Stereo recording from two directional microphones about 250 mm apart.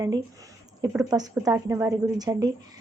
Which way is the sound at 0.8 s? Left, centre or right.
Centre.